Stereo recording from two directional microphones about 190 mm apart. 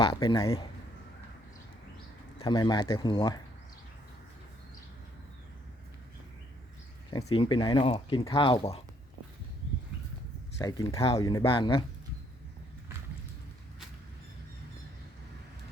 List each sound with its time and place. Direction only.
0.0 s speech: 20° left (ahead or behind)
2.4 s speech: 20° left (ahead or behind)
7.1 s speech: 20° left (ahead or behind)
10.6 s speech: 20° left (ahead or behind)